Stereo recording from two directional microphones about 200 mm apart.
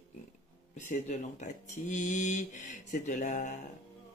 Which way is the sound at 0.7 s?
35° left (ahead or behind).